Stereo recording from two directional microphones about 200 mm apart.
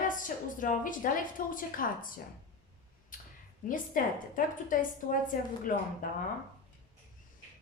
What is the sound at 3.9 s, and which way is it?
A woman's voice, 40° left (ahead or behind).